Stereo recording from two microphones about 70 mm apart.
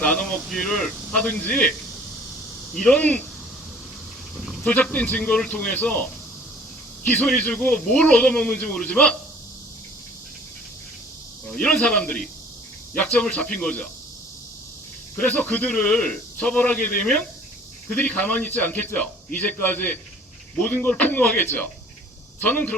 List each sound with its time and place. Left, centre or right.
0.0 s a man's voice: centre
2.7 s a man's voice: centre
4.4 s a sound: centre
4.6 s a man's voice: centre
11.4 s a man's voice: centre
15.2 s a man's voice: centre